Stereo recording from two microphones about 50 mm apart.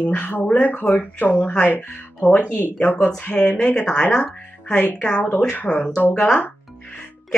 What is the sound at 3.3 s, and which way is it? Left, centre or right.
Speech, left.